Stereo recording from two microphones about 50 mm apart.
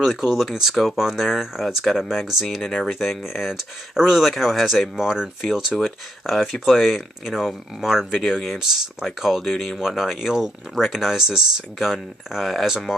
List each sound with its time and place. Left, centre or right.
0.0 s speech: centre
5.7 s speech: centre